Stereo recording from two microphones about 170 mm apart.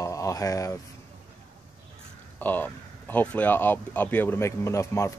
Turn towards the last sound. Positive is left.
turn(degrees=15)  # may be behind; listen again after turning